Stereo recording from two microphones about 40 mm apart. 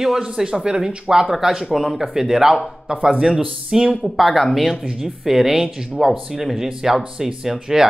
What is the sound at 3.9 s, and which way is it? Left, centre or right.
Speech, centre.